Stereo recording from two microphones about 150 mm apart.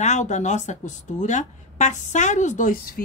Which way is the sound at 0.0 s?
50° left (ahead or behind).